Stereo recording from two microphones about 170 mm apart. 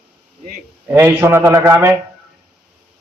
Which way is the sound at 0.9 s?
15° right (ahead or behind).